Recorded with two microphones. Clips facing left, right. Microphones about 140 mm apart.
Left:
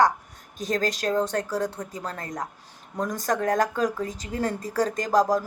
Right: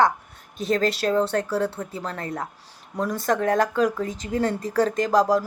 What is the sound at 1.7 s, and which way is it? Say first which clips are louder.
Speech: right 2 dB; 30° right (ahead or behind).